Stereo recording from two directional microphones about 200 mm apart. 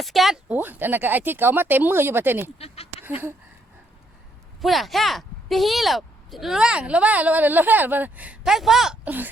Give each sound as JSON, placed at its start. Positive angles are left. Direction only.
{"t": 0.0, "sound": "speech", "side_deg": 0}
{"t": 2.6, "sound": "speech", "side_deg": 30}
{"t": 3.0, "sound": "a sound", "side_deg": -10}
{"t": 4.6, "sound": "speech", "side_deg": 0}